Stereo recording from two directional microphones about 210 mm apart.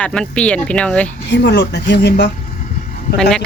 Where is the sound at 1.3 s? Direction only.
55° left (ahead or behind).